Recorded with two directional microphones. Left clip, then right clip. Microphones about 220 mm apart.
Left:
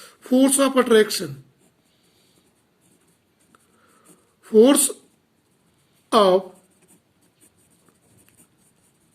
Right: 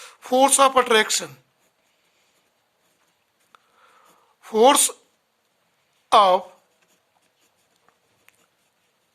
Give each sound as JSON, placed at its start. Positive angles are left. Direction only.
{"t": 0.0, "sound": "speech", "side_deg": -40}
{"t": 4.4, "sound": "speech", "side_deg": -40}
{"t": 6.1, "sound": "speech", "side_deg": -35}